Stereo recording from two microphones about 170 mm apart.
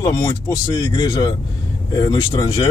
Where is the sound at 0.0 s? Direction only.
20° left (ahead or behind).